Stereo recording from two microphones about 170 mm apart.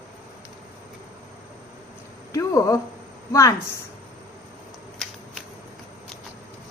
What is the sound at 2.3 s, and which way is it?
Speech, 20° left (ahead or behind).